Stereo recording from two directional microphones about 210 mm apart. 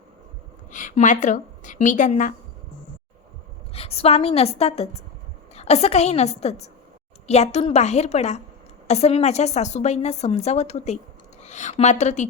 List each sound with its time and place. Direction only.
0.7 s a woman's voice: 35° left (ahead or behind)
3.7 s a woman's voice: 30° left (ahead or behind)